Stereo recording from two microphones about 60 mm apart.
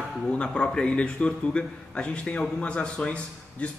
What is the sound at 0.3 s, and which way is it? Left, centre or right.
A man's voice, centre.